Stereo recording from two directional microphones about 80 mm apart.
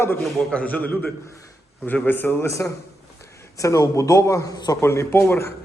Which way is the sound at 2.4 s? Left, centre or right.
Left.